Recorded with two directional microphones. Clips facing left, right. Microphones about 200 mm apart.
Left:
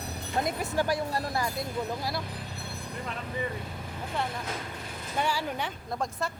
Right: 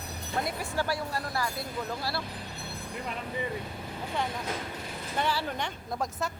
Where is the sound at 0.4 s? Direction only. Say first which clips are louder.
Left 4 dB; 20° left (ahead or behind).